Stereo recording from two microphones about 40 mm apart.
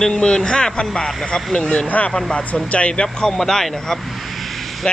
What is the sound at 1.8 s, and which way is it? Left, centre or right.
Speech, left.